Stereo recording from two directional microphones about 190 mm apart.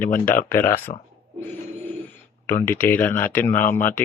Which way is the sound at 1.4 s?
10° left (ahead or behind).